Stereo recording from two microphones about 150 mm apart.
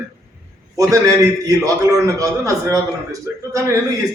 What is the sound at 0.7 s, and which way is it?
A man's voice, 20° right (ahead or behind).